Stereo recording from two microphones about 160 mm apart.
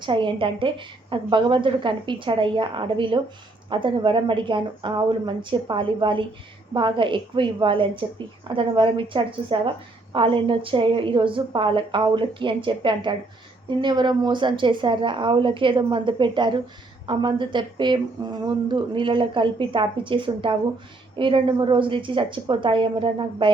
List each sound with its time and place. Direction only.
0.0 s a woman's voice: 30° right (ahead or behind)